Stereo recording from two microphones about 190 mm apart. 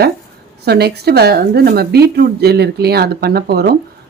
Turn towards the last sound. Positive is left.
turn(degrees=-55)  # may be behind; listen again after turning